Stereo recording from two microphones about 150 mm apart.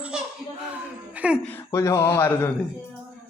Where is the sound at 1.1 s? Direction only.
10° right (ahead or behind).